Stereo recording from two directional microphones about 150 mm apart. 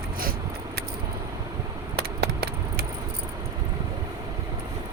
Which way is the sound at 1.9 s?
90° right.